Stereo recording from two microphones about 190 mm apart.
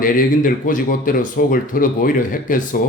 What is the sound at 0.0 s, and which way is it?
Speech, 45° left (ahead or behind).